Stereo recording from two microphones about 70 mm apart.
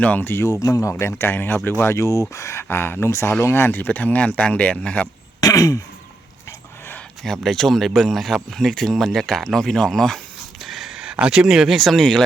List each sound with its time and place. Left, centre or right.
0.0 s speech: left
0.3 s speech: left
0.6 s speech: left
2.0 s speech: left
2.3 s speech: left; by 5.0 s centre
5.4 s throat clearing: left
7.3 s speech: centre